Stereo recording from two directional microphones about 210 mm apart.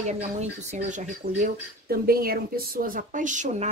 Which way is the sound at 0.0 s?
35° right (ahead or behind).